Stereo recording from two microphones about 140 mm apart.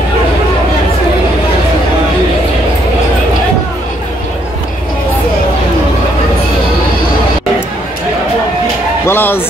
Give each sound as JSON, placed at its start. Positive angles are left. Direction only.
{"t": 9.0, "sound": "speech", "side_deg": 15}